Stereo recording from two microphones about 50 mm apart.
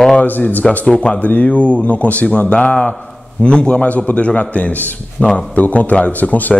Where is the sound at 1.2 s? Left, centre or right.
Left.